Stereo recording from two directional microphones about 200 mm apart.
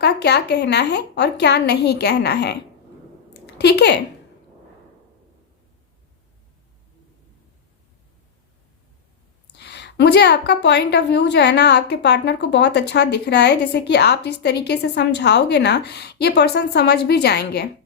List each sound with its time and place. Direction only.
0.0 s a woman's voice: 55° left (ahead or behind)
3.3 s a sound: 55° left (ahead or behind)
9.6 s a woman's voice: 55° left (ahead or behind)